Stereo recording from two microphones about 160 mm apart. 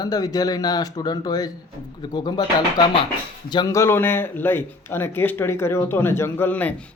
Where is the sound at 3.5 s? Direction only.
25° left (ahead or behind).